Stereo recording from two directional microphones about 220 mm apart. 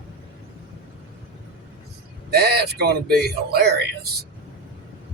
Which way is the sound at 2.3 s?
45° right (ahead or behind).